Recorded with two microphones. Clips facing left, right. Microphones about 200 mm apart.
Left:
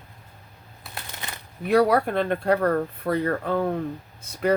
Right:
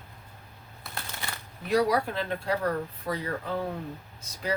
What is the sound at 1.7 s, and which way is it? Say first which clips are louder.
Speech: left 5 dB; 55° left (ahead or behind).